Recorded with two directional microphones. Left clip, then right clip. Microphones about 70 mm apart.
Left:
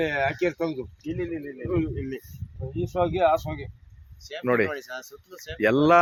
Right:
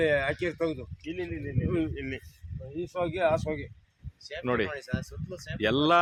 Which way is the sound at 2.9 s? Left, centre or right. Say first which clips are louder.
Left 5 dB; right.